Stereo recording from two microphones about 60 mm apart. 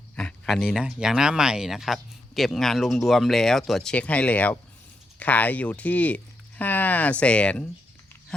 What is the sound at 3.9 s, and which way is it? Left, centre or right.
Speech, left.